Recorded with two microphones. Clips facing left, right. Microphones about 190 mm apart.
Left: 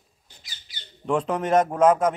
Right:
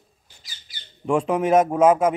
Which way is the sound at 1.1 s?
10° right (ahead or behind).